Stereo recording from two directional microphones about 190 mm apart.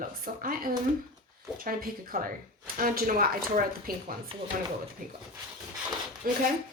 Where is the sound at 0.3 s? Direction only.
50° right (ahead or behind).